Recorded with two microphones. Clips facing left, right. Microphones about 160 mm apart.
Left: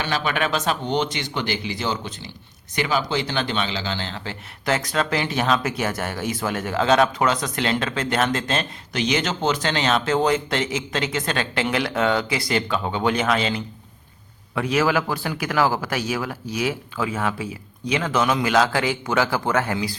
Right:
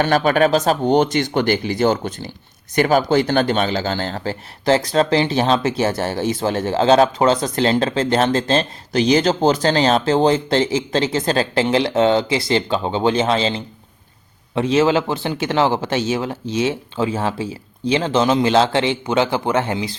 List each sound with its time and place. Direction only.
0.0 s a man's voice: 45° right (ahead or behind); by 20.0 s 20° right (ahead or behind)